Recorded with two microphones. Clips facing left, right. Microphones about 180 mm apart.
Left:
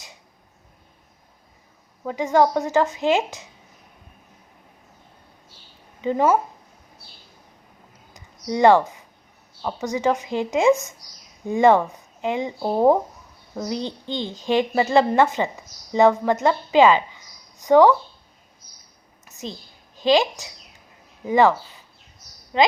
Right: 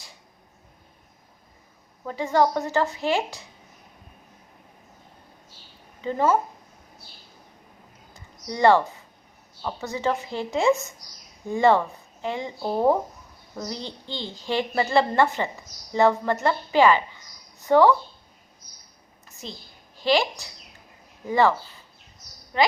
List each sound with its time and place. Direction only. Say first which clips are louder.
2.0 s a child's voice: left 3 dB; 15° left (ahead or behind)
6.0 s speech: left 3 dB; 15° left (ahead or behind)
8.1 s a sound: left 7 dB; 15° left (ahead or behind)
9.6 s a child's voice: left 4 dB; 15° left (ahead or behind)
20.0 s a woman's voice: left 4 dB; 20° left (ahead or behind)
21.2 s a child's voice: left 3 dB; 15° left (ahead or behind)